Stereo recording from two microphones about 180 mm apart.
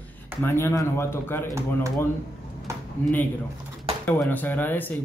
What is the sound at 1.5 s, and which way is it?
Speech, 15° right (ahead or behind).